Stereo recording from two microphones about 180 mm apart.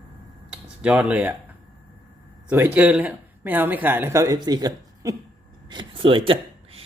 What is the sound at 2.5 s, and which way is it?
Speech, 10° right (ahead or behind).